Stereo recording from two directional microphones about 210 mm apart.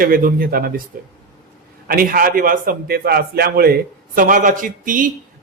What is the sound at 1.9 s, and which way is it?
A man's voice, 45° right (ahead or behind).